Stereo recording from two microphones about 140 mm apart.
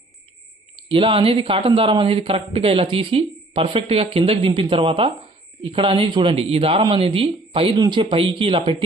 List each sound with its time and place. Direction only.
0.8 s speech: 40° right (ahead or behind)